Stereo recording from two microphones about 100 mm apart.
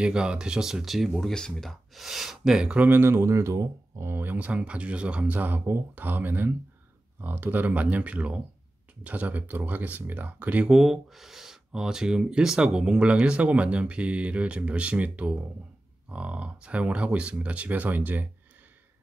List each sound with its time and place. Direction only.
0.0 s speech: 10° right (ahead or behind)